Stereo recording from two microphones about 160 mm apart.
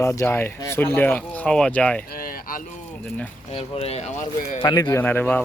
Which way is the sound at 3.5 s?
35° left (ahead or behind).